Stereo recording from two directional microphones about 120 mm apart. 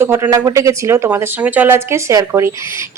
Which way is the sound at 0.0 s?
20° right (ahead or behind).